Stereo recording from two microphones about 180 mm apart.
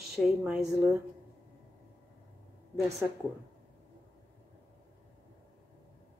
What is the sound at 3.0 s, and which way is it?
Speech, 10° right (ahead or behind).